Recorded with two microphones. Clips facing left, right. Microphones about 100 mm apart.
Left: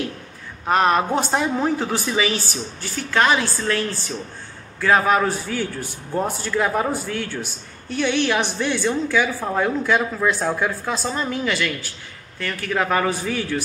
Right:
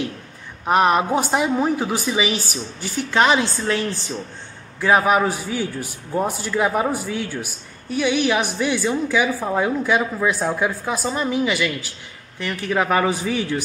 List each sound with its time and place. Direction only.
0.7 s a man's voice: 15° right (ahead or behind)